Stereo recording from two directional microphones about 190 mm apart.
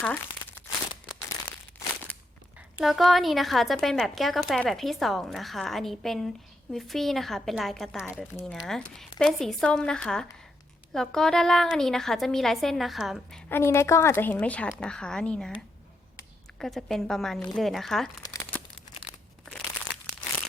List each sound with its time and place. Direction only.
0.0 s crumpling: 5° left (ahead or behind)
2.6 s a woman's voice: centre (ahead or behind)
8.4 s a woman's voice: 15° left (ahead or behind)
8.6 s a woman's voice: centre (ahead or behind)
13.5 s a woman's voice: 15° left (ahead or behind)
16.6 s a woman's voice: centre (ahead or behind)